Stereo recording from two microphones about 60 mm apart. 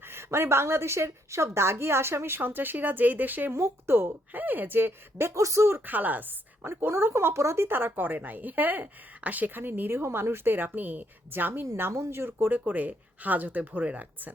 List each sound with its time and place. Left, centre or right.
0.1 s a woman's voice: right
3.5 s speech: right
5.3 s speech: right
5.8 s a woman's voice: right
6.7 s speech: right
10.0 s speech: right
11.8 s a woman's voice: right
12.5 s speech: right